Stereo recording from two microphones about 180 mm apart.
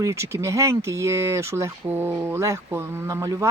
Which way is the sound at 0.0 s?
15° right (ahead or behind).